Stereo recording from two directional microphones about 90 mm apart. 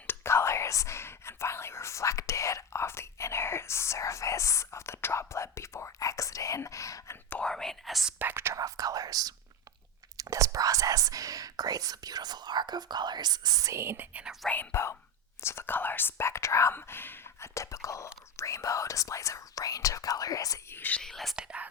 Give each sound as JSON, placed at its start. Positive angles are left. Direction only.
{"t": 0.1, "sound": "speech", "side_deg": 30}
{"t": 7.3, "sound": "speech", "side_deg": 10}
{"t": 8.2, "sound": "speech", "side_deg": -25}
{"t": 8.5, "sound": "speech", "side_deg": -40}
{"t": 13.7, "sound": "speech", "side_deg": -30}
{"t": 14.5, "sound": "speech", "side_deg": 25}
{"t": 20.7, "sound": "speech", "side_deg": 20}
{"t": 21.0, "sound": "speech", "side_deg": 5}
{"t": 21.3, "sound": "speech", "side_deg": -10}